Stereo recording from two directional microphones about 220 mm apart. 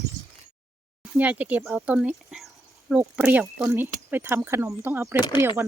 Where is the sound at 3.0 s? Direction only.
10° right (ahead or behind).